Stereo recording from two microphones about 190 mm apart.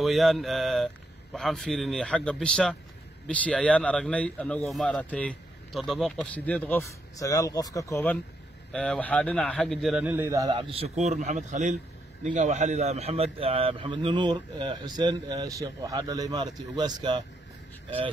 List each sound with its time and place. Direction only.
0.0 s a man's voice: centre (ahead or behind); by 17.2 s 20° right (ahead or behind)